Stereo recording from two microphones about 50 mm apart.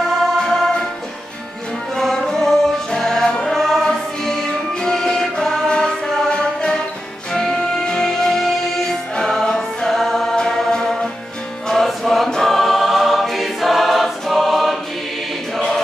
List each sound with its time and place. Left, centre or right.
0.4 s music: centre
2.0 s music: centre
11.6 s music: centre
12.3 s choir: centre